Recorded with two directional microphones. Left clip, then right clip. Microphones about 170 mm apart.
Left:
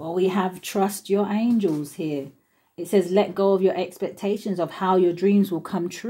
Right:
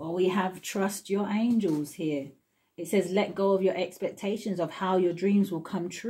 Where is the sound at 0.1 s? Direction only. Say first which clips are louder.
Left 4 dB; 35° left (ahead or behind).